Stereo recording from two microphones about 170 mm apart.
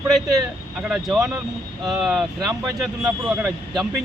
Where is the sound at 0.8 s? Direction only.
5° right (ahead or behind).